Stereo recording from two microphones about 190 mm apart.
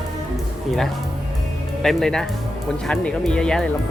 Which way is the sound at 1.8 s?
Centre (ahead or behind).